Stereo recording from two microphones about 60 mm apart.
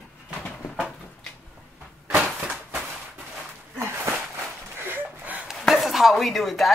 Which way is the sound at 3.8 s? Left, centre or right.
Right.